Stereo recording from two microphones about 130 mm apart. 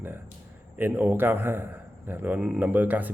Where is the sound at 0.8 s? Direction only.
15° right (ahead or behind).